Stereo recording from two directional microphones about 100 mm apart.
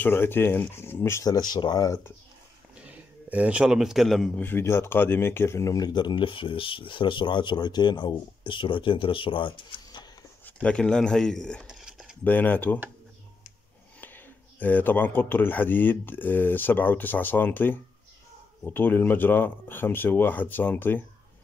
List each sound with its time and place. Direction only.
0.0 s speech: 20° left (ahead or behind); by 2.0 s 40° left (ahead or behind)
2.7 s a sound: 15° right (ahead or behind)
4.4 s speech: 20° left (ahead or behind); by 10.0 s 60° left (ahead or behind)
10.4 s speech: 10° left (ahead or behind)
11.6 s a sound: 5° right (ahead or behind)
12.3 s speech: 20° left (ahead or behind)
14.0 s speech: 20° left (ahead or behind)